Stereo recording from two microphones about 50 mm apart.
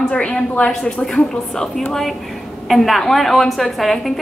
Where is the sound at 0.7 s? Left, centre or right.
Centre.